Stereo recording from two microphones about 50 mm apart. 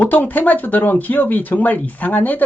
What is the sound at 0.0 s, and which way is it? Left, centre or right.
Speech, left.